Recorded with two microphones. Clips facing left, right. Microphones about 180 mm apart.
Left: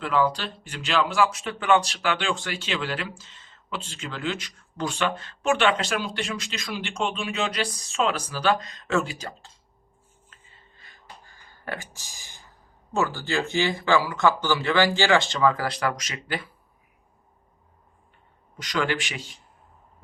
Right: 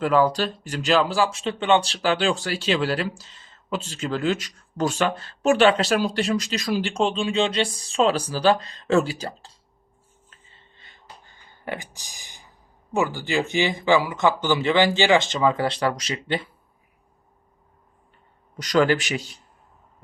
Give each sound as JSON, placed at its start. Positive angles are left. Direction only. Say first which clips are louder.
{"t": 0.0, "sound": "speech", "louder": "right 5 dB", "side_deg": -40}
{"t": 18.5, "sound": "speech", "louder": "right 7 dB", "side_deg": -40}